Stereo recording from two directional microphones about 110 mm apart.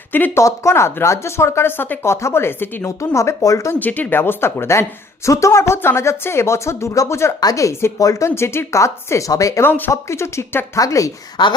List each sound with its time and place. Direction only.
0.1 s speech: 15° left (ahead or behind)
3.8 s speech: 15° left (ahead or behind); by 9.6 s 30° left (ahead or behind)
9.6 s a woman's voice: 20° left (ahead or behind)
11.4 s speech: 45° left (ahead or behind)